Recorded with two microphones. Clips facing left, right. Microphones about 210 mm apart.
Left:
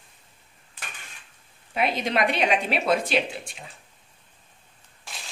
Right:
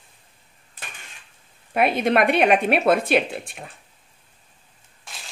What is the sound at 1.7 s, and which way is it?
Speech, 55° right (ahead or behind).